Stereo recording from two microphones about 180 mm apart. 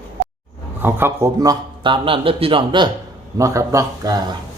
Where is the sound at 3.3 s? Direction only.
20° right (ahead or behind).